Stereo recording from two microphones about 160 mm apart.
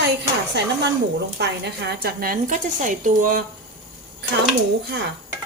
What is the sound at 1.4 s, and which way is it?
A woman's voice, 90° right.